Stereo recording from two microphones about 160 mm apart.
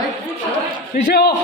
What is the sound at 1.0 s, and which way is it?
Speech, 85° left.